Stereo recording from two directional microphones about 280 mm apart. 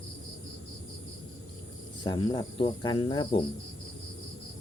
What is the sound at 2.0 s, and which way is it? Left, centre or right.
Speech, centre.